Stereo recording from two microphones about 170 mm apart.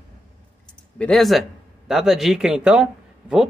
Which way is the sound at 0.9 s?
5° left (ahead or behind).